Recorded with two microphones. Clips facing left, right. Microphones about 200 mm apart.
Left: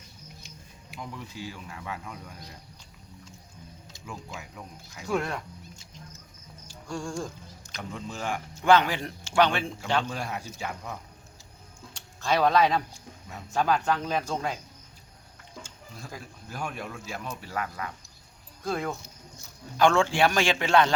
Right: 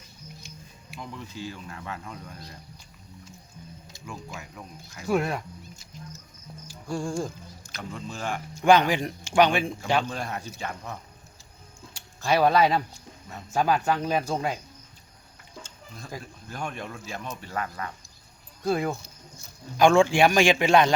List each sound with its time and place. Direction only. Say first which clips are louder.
0.4 s speech: right 2 dB; 15° left (ahead or behind)
4.0 s speech: right 1 dB; 10° right (ahead or behind)
6.7 s music: right 4 dB; 5° right (ahead or behind)
7.8 s speech: even; 15° left (ahead or behind)
8.5 s speech: right 2 dB; 15° right (ahead or behind)
10.1 s speech: right 1 dB; 10° left (ahead or behind)
11.9 s speech: right 2 dB; 10° right (ahead or behind)
16.5 s speech: right 1 dB; 5° left (ahead or behind)
18.6 s speech: right 4 dB; 10° right (ahead or behind)